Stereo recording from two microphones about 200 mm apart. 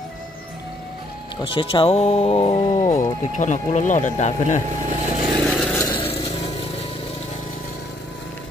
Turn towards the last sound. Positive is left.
turn(degrees=30)  # may be behind; listen again after turning